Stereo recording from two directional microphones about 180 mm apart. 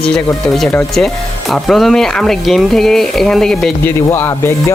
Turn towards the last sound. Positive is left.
turn(degrees=15)  # may be behind; listen again after turning